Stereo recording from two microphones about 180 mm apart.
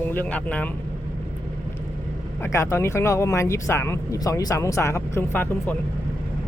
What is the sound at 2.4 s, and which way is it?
Speech, 15° left (ahead or behind).